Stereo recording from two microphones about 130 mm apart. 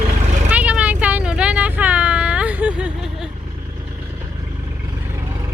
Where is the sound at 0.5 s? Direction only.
10° right (ahead or behind).